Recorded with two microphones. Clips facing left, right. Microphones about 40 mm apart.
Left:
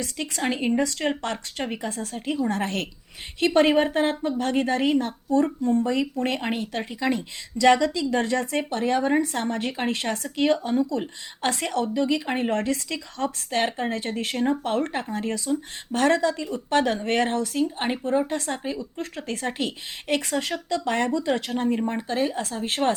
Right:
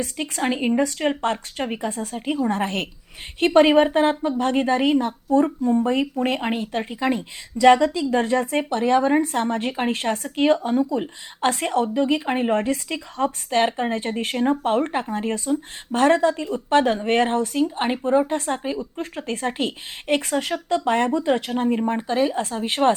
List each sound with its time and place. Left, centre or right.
0.0 s a woman's voice: right
0.4 s speech: centre
1.2 s a woman's voice: right
6.1 s a woman's voice: right
10.8 s a woman's voice: right
12.3 s a woman's voice: centre
13.9 s a woman's voice: right
22.2 s a woman's voice: right